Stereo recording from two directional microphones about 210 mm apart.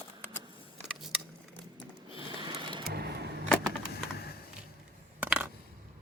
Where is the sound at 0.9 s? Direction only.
Centre (ahead or behind).